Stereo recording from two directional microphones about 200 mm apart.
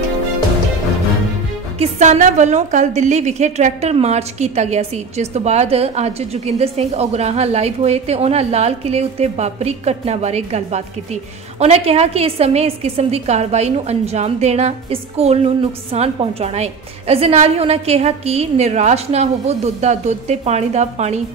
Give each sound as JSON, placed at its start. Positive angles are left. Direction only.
{"t": 1.8, "sound": "a woman's voice", "side_deg": -35}